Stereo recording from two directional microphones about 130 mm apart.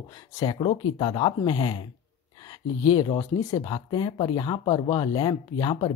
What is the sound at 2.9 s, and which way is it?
Speech, 40° left (ahead or behind).